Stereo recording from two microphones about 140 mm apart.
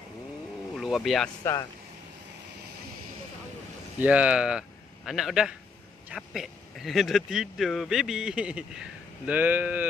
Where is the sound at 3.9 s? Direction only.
10° right (ahead or behind).